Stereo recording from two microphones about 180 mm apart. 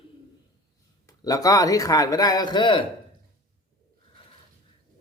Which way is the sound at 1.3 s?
20° left (ahead or behind).